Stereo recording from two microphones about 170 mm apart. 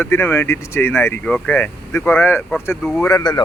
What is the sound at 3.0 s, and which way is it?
Speech, 20° left (ahead or behind).